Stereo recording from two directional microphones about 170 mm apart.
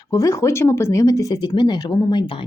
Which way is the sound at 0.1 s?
20° left (ahead or behind).